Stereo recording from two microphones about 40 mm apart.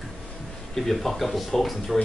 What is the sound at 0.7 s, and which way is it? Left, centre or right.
Speech, centre.